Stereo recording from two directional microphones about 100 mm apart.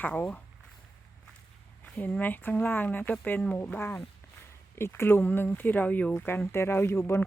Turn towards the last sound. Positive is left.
turn(degrees=25)  # may be behind; listen again after turning